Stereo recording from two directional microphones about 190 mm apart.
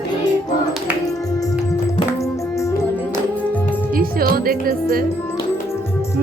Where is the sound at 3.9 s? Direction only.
50° right (ahead or behind).